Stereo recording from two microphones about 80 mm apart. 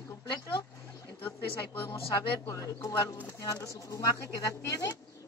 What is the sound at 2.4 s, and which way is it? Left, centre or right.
Speech, left.